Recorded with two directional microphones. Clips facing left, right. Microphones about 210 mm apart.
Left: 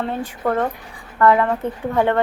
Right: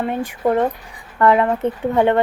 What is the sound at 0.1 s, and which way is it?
A woman's voice, 15° right (ahead or behind).